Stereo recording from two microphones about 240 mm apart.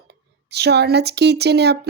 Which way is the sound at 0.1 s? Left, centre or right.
Right.